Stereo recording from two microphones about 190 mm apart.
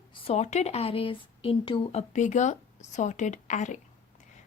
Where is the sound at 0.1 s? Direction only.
30° left (ahead or behind).